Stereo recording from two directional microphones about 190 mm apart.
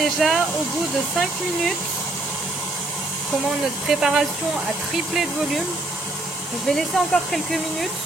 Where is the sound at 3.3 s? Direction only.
Centre (ahead or behind).